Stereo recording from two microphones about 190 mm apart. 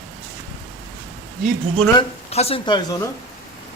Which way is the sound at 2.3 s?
35° left (ahead or behind).